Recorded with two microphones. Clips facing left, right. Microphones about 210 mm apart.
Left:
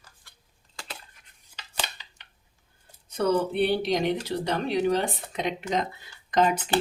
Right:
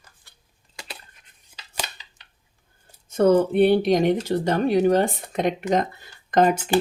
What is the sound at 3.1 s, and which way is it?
Speech, 50° right (ahead or behind).